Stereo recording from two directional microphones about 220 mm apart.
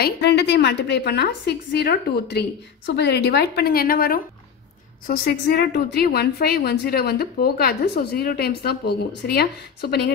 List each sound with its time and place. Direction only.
0.0 s a woman's voice: 50° left (ahead or behind)